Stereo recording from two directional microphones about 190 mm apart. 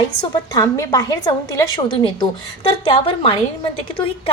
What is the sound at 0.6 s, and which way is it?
A woman's voice, 20° left (ahead or behind).